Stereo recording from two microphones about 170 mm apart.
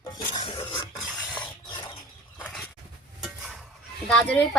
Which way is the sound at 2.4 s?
10° left (ahead or behind).